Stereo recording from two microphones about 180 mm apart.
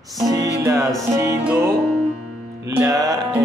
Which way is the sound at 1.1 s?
15° right (ahead or behind).